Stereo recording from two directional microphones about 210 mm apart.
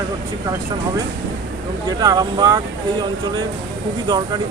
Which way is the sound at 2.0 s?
20° right (ahead or behind).